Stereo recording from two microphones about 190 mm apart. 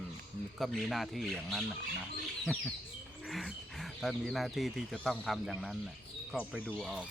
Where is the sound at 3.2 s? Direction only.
Centre (ahead or behind).